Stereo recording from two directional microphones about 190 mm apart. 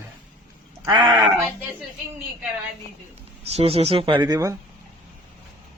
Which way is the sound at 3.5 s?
30° right (ahead or behind).